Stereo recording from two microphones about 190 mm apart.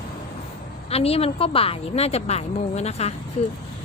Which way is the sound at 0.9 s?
30° left (ahead or behind).